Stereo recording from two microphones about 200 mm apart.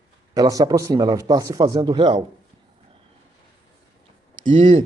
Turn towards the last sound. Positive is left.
turn(degrees=-25)  # may be behind; listen again after turning